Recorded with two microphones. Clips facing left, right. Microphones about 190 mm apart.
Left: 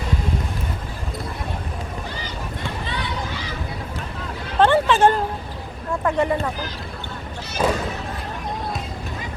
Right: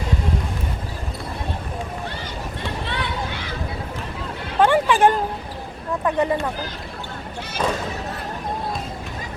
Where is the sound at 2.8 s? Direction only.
60° right (ahead or behind).